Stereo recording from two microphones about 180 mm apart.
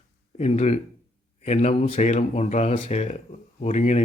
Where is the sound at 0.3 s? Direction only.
35° left (ahead or behind).